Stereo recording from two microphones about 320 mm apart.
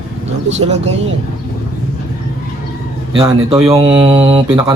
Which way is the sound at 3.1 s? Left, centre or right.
Centre.